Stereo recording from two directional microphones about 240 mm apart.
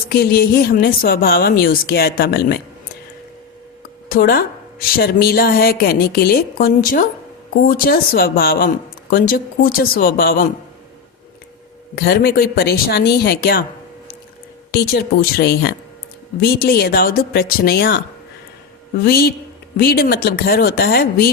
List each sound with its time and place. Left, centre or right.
0.1 s speech: left
4.1 s speech: left
11.9 s speech: left
14.7 s speech: left
19.0 s speech: left